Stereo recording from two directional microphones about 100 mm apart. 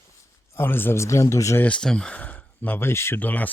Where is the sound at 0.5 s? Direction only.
20° left (ahead or behind).